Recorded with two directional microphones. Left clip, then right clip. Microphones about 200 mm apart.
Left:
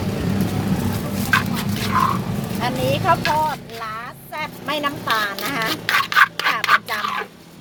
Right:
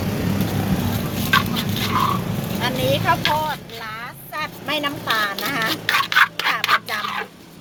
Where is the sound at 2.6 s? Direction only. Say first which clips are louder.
Left 1 dB; 20° left (ahead or behind).